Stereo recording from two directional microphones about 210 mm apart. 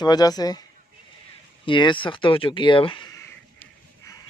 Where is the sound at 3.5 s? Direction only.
15° left (ahead or behind).